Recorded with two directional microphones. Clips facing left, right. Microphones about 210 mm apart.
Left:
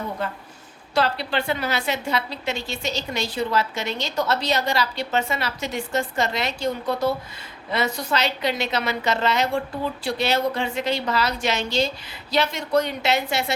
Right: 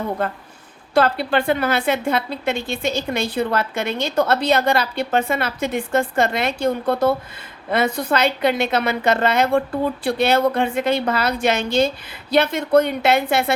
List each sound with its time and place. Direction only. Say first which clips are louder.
0.9 s a woman's voice: right 5 dB; 50° right (ahead or behind)